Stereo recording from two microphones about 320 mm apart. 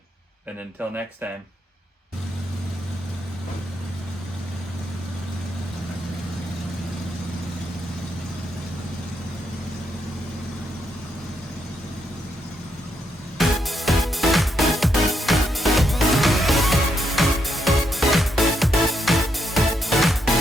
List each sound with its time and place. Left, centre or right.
13.4 s music: centre